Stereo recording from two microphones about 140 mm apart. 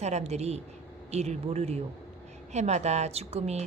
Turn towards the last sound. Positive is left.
turn(degrees=-50)  # may be behind; listen again after turning